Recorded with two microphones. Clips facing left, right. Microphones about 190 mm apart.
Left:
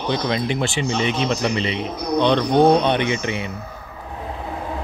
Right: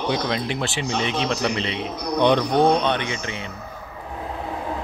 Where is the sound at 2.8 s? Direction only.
15° left (ahead or behind).